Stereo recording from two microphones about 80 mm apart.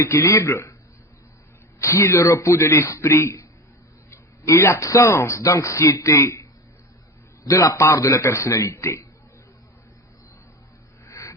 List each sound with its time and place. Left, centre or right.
0.0 s speech: left
1.8 s speech: left
11.0 s a sound: left